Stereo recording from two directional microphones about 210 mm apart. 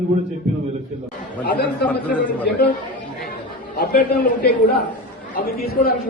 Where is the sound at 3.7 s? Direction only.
45° left (ahead or behind).